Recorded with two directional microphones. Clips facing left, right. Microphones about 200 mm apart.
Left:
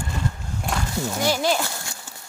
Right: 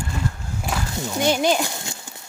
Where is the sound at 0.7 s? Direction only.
Centre (ahead or behind).